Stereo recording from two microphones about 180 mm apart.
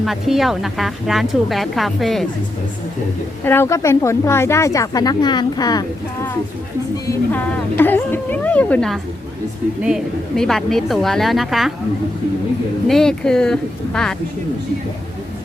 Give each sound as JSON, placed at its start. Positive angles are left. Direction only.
{"t": 0.0, "sound": "speech", "side_deg": 0}
{"t": 3.4, "sound": "speech", "side_deg": 15}
{"t": 7.1, "sound": "speech", "side_deg": 10}
{"t": 12.9, "sound": "speech", "side_deg": 5}